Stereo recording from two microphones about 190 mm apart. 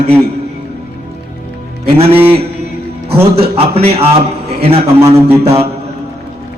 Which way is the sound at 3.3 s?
30° right (ahead or behind).